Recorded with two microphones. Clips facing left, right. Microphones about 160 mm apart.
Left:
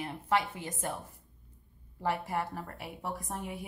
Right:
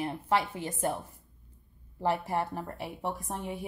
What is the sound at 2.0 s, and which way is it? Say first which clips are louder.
A woman's voice: right 3 dB; 30° right (ahead or behind).